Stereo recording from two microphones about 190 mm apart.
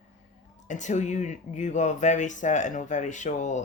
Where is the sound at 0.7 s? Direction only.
40° left (ahead or behind).